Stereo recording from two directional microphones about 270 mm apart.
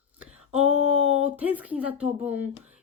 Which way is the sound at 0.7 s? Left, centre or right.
Left.